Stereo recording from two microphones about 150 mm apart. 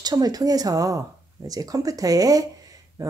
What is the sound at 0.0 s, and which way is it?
Speech, 25° right (ahead or behind).